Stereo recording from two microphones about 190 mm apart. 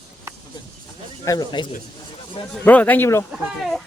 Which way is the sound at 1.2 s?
20° left (ahead or behind).